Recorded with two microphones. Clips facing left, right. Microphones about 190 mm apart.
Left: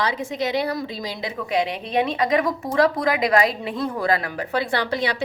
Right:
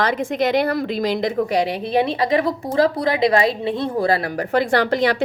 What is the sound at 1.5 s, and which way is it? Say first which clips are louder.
A woman's voice: right 3 dB; 35° right (ahead or behind).